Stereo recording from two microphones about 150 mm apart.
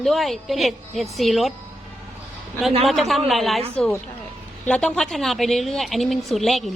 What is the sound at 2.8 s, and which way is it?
Speech, centre (ahead or behind).